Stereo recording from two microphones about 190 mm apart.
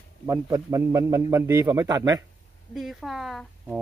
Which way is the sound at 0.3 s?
15° right (ahead or behind).